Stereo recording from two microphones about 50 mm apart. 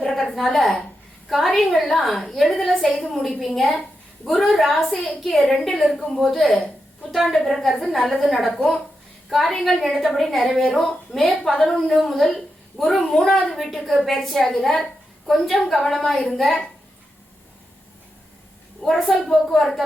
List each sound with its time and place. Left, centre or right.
0.0 s a woman's voice: centre
18.8 s a woman's voice: centre